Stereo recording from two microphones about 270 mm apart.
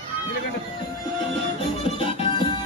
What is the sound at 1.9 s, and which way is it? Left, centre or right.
Music, left.